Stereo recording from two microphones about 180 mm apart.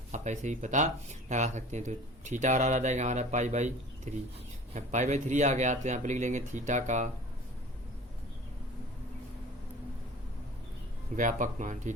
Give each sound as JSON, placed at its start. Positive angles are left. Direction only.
{"t": 0.1, "sound": "speech", "side_deg": -40}
{"t": 11.2, "sound": "speech", "side_deg": -45}